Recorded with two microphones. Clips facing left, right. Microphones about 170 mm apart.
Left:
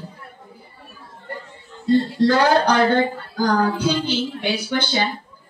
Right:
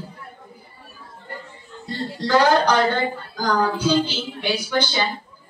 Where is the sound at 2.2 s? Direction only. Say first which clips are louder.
Right 3 dB; 60° left (ahead or behind).